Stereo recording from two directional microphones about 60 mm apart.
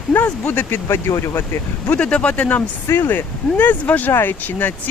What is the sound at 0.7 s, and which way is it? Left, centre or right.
Speech, left.